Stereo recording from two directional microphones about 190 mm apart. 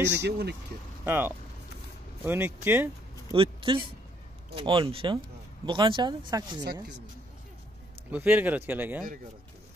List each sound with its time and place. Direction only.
0.1 s speech: 60° right (ahead or behind)
1.0 s speech: 10° right (ahead or behind)
3.3 s speech: 25° right (ahead or behind)
6.6 s speech: 60° right (ahead or behind)
8.1 s speech: 10° right (ahead or behind)